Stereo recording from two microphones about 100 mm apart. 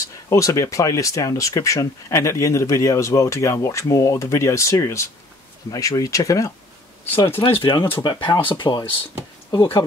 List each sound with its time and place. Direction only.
0.0 s speech: 30° left (ahead or behind)
7.1 s speech: 20° left (ahead or behind)
7.6 s speech: 50° left (ahead or behind)